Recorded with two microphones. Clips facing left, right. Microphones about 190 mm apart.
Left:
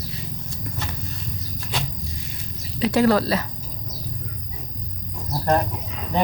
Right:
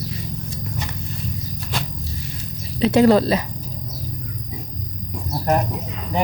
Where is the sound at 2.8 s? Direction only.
20° right (ahead or behind).